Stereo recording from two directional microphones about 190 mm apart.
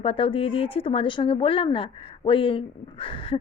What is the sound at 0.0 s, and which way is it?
Speech, 30° left (ahead or behind).